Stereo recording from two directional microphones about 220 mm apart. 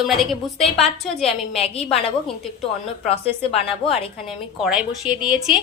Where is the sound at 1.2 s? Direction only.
25° left (ahead or behind).